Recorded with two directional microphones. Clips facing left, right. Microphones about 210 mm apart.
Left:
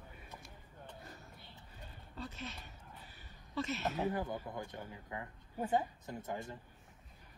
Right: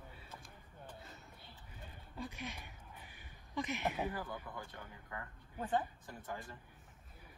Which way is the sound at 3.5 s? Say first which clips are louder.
Left 1 dB; 15° right (ahead or behind).